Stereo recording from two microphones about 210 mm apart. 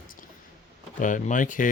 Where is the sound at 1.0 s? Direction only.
35° left (ahead or behind).